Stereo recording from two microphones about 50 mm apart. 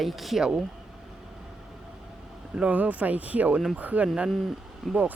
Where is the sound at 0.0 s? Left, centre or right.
Centre.